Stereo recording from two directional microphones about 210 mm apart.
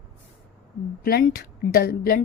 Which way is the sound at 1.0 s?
45° left (ahead or behind).